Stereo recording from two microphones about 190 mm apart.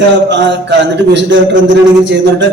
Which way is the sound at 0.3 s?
70° right (ahead or behind).